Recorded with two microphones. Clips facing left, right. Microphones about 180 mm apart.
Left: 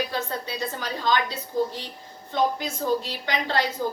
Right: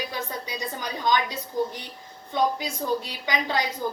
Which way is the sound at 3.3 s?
15° right (ahead or behind).